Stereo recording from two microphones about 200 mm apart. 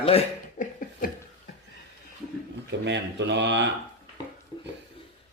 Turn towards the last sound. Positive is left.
turn(degrees=-60)  # may be behind; listen again after turning